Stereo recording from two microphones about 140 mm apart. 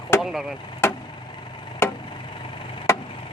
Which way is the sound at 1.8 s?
20° left (ahead or behind).